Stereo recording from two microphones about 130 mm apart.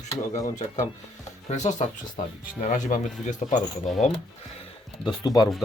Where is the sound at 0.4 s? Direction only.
70° left (ahead or behind).